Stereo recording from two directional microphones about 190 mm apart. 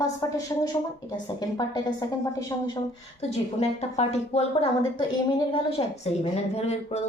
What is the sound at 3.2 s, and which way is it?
A woman's voice, 35° left (ahead or behind).